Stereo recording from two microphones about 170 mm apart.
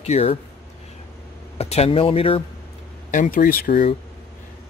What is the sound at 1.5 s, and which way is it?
Speech, 35° left (ahead or behind).